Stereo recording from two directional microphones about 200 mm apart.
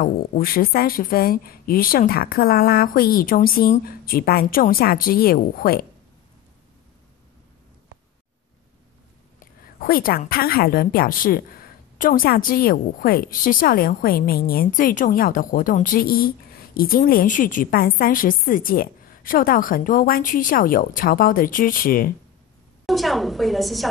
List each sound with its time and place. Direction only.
0.0 s a woman's voice: 45° left (ahead or behind)
9.8 s a woman's voice: 45° left (ahead or behind)
22.8 s a woman's voice: centre (ahead or behind)